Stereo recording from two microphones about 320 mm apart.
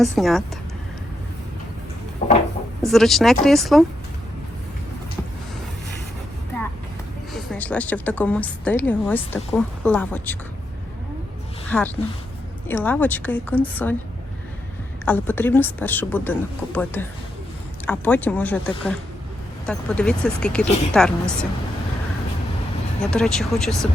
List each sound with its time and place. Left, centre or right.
0.0 s a woman's voice: centre
2.2 s a sound: left
2.8 s a woman's voice: centre
7.3 s a woman's voice: centre
11.7 s a woman's voice: centre
15.0 s a woman's voice: centre
23.1 s a woman's voice: centre